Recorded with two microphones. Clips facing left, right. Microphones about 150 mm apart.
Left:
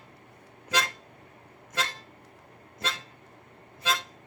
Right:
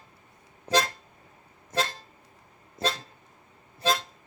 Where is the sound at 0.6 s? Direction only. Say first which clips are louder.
Right 5 dB; 35° right (ahead or behind).